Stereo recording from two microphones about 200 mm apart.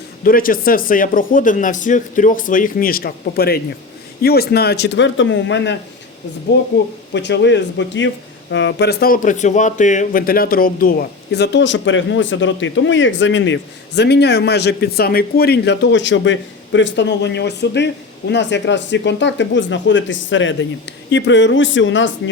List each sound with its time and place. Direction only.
0.3 s speech: 45° left (ahead or behind); by 22.1 s 70° left (ahead or behind)